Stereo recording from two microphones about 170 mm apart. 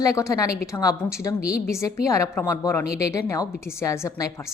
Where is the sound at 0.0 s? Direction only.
20° left (ahead or behind).